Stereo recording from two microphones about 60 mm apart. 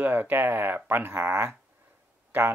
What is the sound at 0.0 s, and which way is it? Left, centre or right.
Speech, right.